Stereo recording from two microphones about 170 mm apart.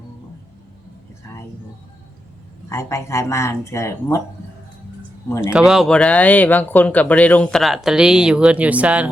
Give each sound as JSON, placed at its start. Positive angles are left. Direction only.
{"t": 2.6, "sound": "speech", "side_deg": 15}
{"t": 5.4, "sound": "speech", "side_deg": -5}